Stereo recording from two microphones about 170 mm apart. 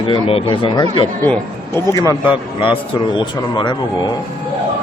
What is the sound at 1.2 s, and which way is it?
Speech, 15° left (ahead or behind).